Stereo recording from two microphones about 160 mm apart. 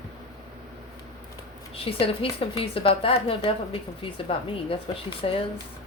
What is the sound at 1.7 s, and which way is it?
A woman's voice, 35° left (ahead or behind).